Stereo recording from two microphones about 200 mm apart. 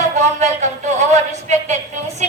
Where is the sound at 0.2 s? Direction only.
35° right (ahead or behind).